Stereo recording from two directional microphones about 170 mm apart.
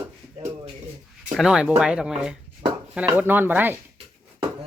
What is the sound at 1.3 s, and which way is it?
Speech, 5° right (ahead or behind).